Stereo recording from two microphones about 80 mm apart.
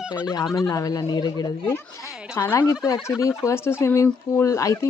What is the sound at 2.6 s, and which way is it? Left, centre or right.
Speech, left.